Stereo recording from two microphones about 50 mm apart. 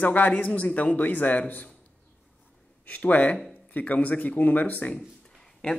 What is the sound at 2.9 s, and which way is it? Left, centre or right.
Speech, left.